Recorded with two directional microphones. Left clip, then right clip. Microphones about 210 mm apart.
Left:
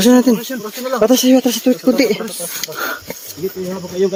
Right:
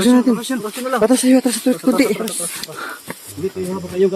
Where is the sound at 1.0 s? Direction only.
20° left (ahead or behind).